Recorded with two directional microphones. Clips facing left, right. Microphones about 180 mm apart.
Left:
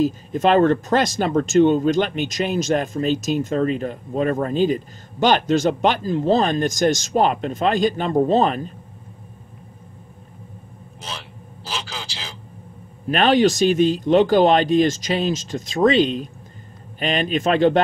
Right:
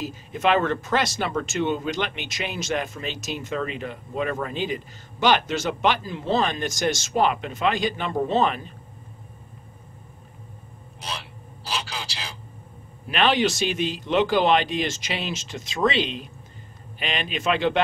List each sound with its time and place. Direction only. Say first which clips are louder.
0.0 s speech: left 6 dB; 45° left (ahead or behind)
13.1 s speech: left 6 dB; 45° left (ahead or behind)